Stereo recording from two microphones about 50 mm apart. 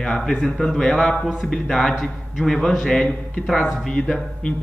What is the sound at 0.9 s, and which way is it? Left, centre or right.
A man's voice, left.